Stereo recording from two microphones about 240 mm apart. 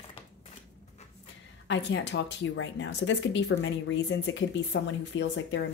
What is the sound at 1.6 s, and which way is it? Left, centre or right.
A woman's voice, left.